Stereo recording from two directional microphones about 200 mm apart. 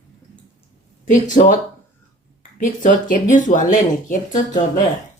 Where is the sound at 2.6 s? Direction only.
40° left (ahead or behind).